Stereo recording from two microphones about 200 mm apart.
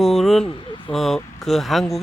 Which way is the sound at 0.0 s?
Centre (ahead or behind).